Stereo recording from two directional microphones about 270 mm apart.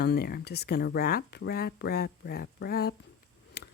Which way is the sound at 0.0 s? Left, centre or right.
Left.